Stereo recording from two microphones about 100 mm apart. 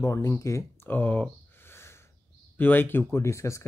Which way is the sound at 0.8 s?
20° left (ahead or behind).